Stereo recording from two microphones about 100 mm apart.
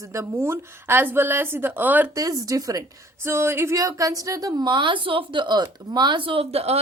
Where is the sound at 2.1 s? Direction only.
35° right (ahead or behind).